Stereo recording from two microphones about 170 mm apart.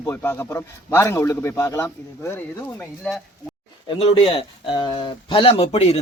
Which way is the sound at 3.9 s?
35° left (ahead or behind).